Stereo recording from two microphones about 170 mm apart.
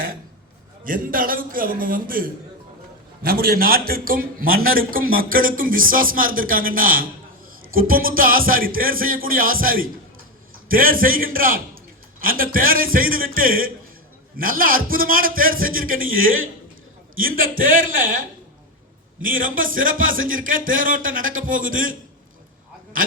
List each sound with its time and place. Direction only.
0.9 s a man's voice: 55° right (ahead or behind)